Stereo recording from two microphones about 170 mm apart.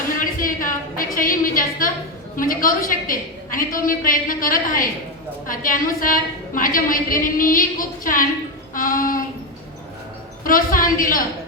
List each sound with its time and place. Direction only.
0.2 s a sound: 55° left (ahead or behind)
2.3 s a woman's voice: 55° left (ahead or behind)
8.7 s child singing: 55° left (ahead or behind)
10.4 s a woman's voice: 55° left (ahead or behind)